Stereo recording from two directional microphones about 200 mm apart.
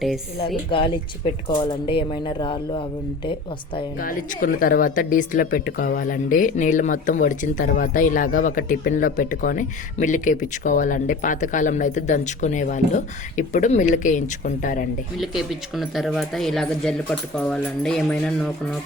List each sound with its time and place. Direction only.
1.5 s speech: 25° left (ahead or behind)
4.0 s speech: 45° left (ahead or behind)
15.2 s speech: centre (ahead or behind)